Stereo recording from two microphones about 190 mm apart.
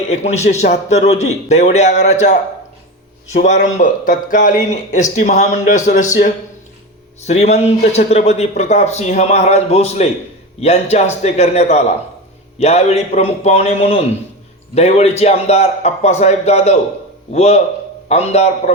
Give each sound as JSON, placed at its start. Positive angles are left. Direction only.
{"t": 0.1, "sound": "a man's voice", "side_deg": 35}